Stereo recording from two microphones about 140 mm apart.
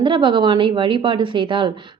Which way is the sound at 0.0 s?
35° right (ahead or behind).